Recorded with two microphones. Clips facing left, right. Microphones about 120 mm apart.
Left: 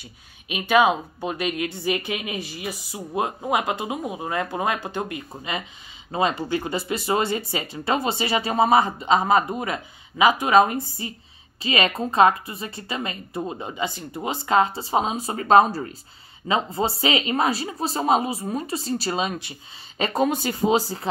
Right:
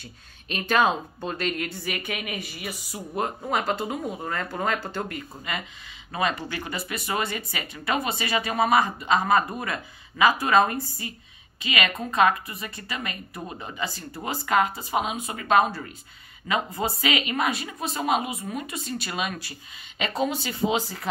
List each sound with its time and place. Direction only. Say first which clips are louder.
0.0 s speech: even; 10° left (ahead or behind)
1.8 s speech: left 6 dB; 25° left (ahead or behind)
3.2 s speech: left 3 dB; 15° left (ahead or behind)
20.0 s speech: left 4 dB; 45° left (ahead or behind)